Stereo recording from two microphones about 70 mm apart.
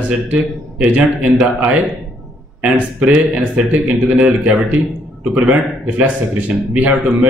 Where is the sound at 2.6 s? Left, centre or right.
Right.